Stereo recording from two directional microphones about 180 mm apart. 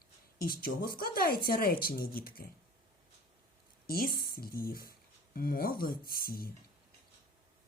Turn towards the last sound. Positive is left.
turn(degrees=55)  # may be behind; listen again after turning